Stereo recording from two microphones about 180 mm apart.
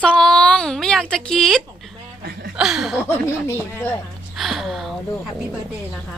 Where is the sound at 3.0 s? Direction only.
15° left (ahead or behind).